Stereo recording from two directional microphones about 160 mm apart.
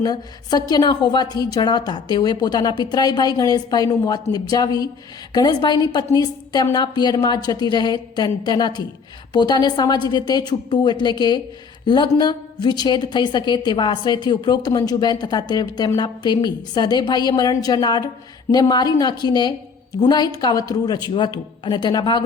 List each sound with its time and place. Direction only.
0.0 s a woman's voice: 25° left (ahead or behind)